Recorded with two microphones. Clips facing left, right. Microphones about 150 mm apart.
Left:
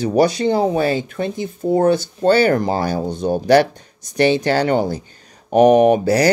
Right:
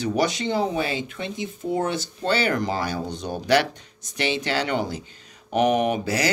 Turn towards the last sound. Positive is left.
turn(degrees=40)  # may be behind; listen again after turning